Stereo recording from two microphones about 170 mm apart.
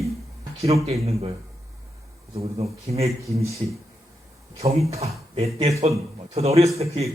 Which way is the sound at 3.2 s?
20° right (ahead or behind).